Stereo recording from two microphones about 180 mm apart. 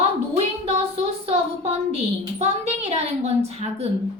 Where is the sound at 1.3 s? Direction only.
35° right (ahead or behind).